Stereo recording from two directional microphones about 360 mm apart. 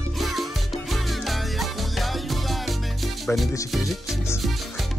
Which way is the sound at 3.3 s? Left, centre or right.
Centre.